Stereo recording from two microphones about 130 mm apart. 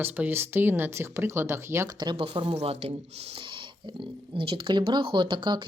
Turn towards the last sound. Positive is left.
turn(degrees=-35)  # may be behind; listen again after turning